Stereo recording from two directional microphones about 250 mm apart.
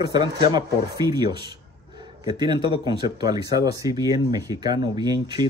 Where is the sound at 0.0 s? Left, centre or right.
Centre.